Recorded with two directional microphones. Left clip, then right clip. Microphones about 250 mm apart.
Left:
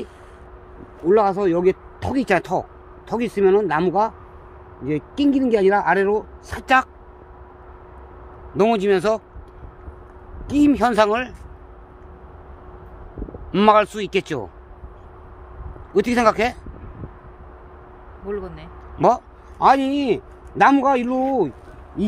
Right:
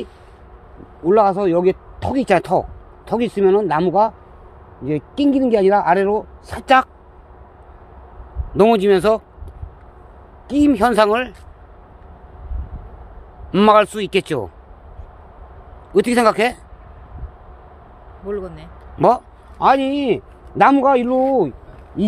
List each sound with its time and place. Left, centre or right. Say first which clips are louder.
1.0 s speech: right 3 dB; centre
8.5 s speech: right 4 dB; right
10.5 s speech: right 2 dB; right
13.5 s speech: right 3 dB; right
15.9 s speech: right 3 dB; right
18.3 s speech: right 3 dB; centre
18.9 s speech: right 3 dB; right